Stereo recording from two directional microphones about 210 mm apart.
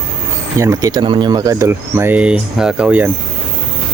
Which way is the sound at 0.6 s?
15° right (ahead or behind).